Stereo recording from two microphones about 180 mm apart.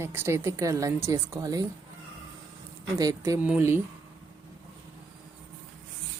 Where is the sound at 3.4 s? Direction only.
10° right (ahead or behind).